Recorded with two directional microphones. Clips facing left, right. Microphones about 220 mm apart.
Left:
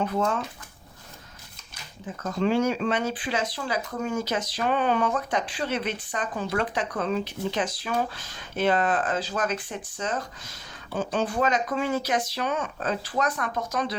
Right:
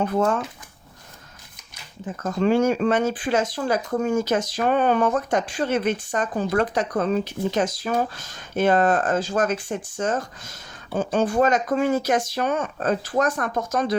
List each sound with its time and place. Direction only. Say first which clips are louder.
0.0 s speech: right 4 dB; 50° right (ahead or behind)
2.4 s speech: right 4 dB; 50° right (ahead or behind)